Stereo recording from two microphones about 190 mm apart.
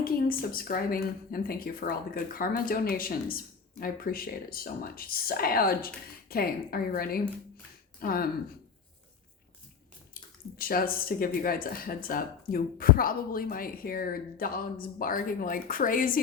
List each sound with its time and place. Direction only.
0.0 s speech: 50° left (ahead or behind)
10.2 s drip: 50° left (ahead or behind)
10.6 s speech: 50° left (ahead or behind)